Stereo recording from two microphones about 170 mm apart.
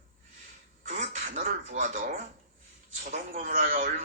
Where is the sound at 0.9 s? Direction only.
45° right (ahead or behind).